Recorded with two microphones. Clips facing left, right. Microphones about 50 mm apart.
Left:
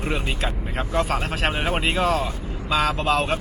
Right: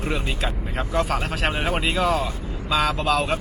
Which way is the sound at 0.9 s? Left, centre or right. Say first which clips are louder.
Even; left.